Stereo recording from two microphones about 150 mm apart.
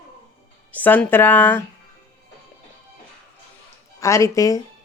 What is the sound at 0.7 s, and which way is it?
Speech, 10° left (ahead or behind).